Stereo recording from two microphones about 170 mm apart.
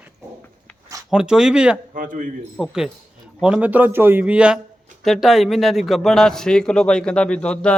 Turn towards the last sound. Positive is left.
turn(degrees=5)  # may be behind; listen again after turning